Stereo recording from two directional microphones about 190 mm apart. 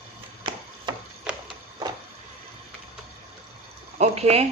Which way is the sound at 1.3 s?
5° right (ahead or behind).